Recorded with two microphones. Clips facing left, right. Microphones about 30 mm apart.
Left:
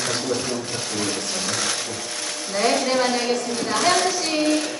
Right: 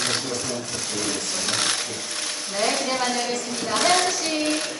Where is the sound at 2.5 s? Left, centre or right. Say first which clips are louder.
Left 4 dB; centre.